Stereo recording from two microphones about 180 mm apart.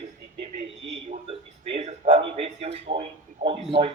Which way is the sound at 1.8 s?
35° right (ahead or behind).